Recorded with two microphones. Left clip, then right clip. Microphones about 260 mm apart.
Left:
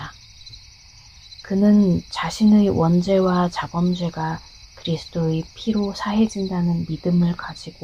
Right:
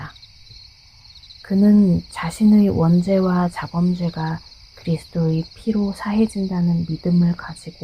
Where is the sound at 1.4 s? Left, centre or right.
Centre.